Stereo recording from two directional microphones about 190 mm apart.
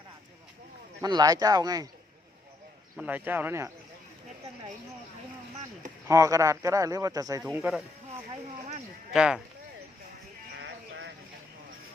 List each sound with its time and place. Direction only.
1.0 s speech: 20° right (ahead or behind)
3.0 s speech: 10° right (ahead or behind)
6.1 s speech: 15° right (ahead or behind)
9.1 s speech: 5° right (ahead or behind)